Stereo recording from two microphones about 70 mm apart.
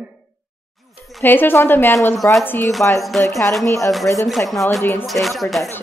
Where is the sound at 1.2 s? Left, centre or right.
Left.